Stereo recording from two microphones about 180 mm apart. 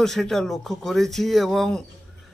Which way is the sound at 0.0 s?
Centre (ahead or behind).